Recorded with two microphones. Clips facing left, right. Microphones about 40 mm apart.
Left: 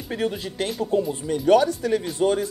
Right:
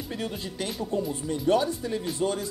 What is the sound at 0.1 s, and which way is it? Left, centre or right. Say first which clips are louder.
Speech: left 9 dB; left.